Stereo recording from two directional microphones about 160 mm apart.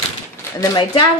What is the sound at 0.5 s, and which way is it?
Speech, 25° left (ahead or behind).